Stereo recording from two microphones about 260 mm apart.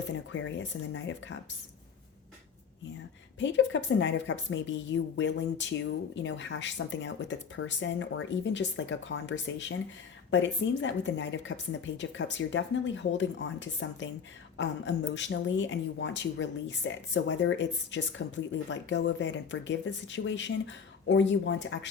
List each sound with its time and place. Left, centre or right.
0.5 s a woman's voice: left
3.3 s a woman's voice: left